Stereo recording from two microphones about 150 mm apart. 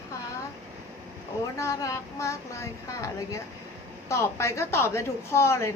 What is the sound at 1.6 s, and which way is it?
A woman's voice, 20° left (ahead or behind).